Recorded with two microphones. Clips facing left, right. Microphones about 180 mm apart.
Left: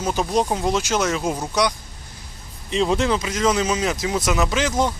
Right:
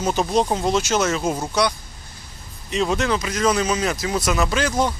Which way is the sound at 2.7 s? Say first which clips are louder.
Left 1 dB; 30° left (ahead or behind).